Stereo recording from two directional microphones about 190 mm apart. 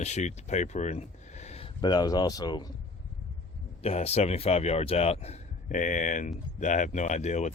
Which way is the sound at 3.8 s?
35° left (ahead or behind).